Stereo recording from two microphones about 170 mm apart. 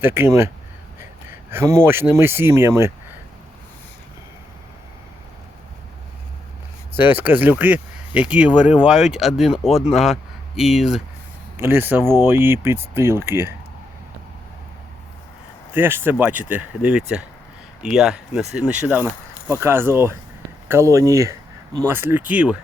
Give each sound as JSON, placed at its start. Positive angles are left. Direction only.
{"t": 0.0, "sound": "speech", "side_deg": -15}
{"t": 6.9, "sound": "speech", "side_deg": -10}
{"t": 11.5, "sound": "speech", "side_deg": -15}
{"t": 15.7, "sound": "speech", "side_deg": -15}